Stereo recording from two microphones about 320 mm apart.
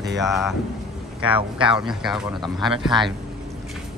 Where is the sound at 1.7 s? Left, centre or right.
Centre.